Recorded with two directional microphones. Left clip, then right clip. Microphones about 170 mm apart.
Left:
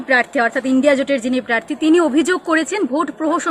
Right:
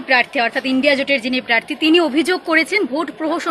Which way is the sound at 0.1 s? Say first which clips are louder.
Even; 50° left (ahead or behind).